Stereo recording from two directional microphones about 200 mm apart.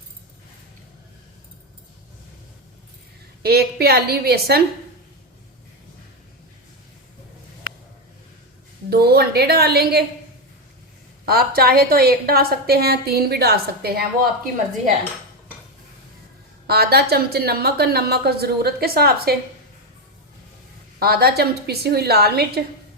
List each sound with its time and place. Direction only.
3.4 s a woman's voice: 50° right (ahead or behind)
8.9 s a woman's voice: 50° right (ahead or behind)
11.3 s a woman's voice: 50° right (ahead or behind)
16.6 s a woman's voice: 50° right (ahead or behind)
21.0 s a woman's voice: 50° right (ahead or behind)